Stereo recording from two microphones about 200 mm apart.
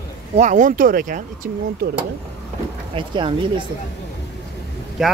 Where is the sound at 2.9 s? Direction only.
25° right (ahead or behind).